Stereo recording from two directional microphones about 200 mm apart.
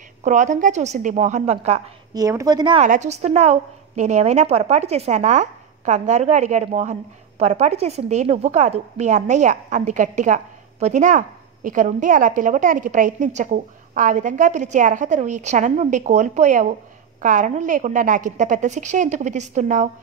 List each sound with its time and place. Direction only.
0.2 s a woman's voice: 40° right (ahead or behind)
2.1 s a woman's voice: 15° right (ahead or behind)
2.8 s a woman's voice: 35° right (ahead or behind)